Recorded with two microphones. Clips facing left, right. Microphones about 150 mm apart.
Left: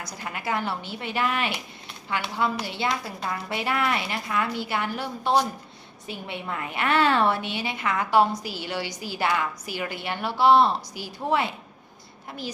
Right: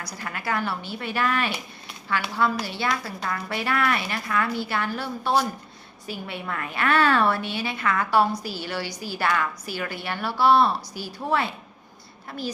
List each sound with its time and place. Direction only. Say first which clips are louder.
0.0 s a woman's voice: even; 20° left (ahead or behind)